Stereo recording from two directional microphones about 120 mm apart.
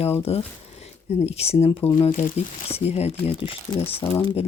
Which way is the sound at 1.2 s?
60° left (ahead or behind).